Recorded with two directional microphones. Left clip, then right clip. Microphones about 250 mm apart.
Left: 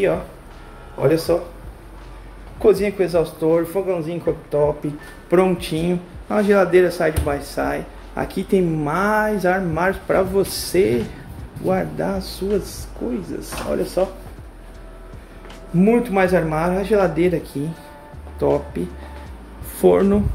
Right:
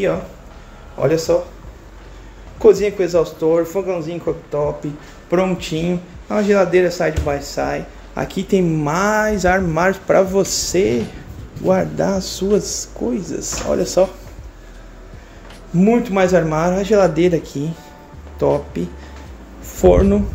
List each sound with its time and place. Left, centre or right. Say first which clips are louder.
0.9 s speech: right 2 dB; centre
2.6 s speech: right 4 dB; centre
11.6 s speech: right 5 dB; centre
15.8 s speech: right 2 dB; centre
19.8 s speech: right 2 dB; centre